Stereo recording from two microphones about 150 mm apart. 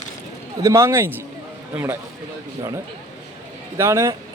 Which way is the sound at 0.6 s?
20° right (ahead or behind).